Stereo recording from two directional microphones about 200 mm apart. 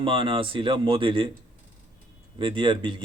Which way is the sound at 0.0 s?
25° right (ahead or behind).